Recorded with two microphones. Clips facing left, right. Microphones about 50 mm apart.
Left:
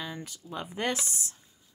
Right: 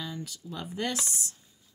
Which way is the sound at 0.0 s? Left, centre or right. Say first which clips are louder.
Even; left.